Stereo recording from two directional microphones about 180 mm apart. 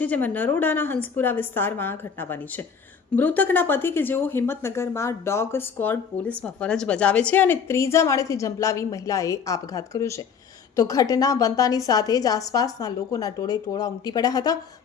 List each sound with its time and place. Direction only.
0.0 s a woman's voice: 10° left (ahead or behind)